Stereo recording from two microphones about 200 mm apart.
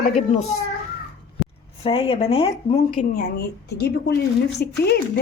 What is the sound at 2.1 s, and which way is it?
Speech, 30° left (ahead or behind).